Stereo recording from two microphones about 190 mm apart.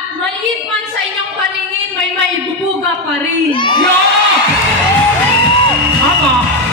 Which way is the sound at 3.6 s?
25° left (ahead or behind).